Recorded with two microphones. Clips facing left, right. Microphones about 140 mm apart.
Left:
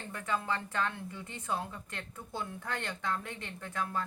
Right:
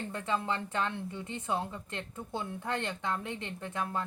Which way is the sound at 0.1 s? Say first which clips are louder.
Even; 25° right (ahead or behind).